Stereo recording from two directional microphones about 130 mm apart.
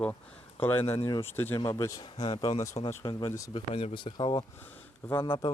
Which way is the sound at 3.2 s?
25° left (ahead or behind).